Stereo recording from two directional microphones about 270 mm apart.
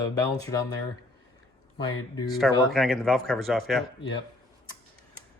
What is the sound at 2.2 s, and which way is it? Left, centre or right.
Speech, centre.